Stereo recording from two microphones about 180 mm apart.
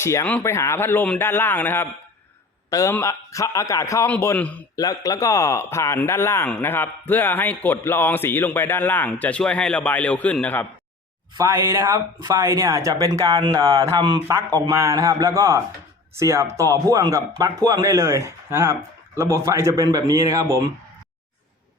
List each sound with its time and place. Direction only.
0.0 s a man's voice: 15° left (ahead or behind)
11.3 s speech: 15° right (ahead or behind)